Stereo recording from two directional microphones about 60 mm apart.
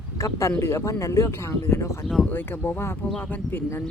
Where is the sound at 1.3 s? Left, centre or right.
Left.